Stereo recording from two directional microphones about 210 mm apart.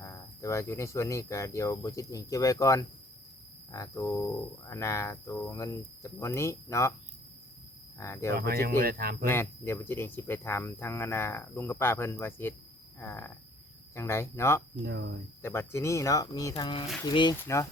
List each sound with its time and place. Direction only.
0.0 s speech: 15° left (ahead or behind)
7.9 s speech: 15° left (ahead or behind)
8.6 s speech: 45° right (ahead or behind)
9.3 s speech: 10° left (ahead or behind)
14.8 s speech: 55° right (ahead or behind)
15.4 s speech: 10° left (ahead or behind)